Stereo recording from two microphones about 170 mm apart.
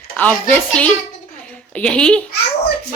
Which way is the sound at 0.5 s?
10° left (ahead or behind).